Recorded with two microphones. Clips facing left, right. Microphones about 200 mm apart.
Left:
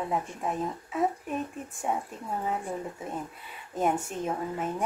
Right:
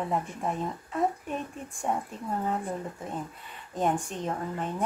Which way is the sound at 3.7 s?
5° left (ahead or behind).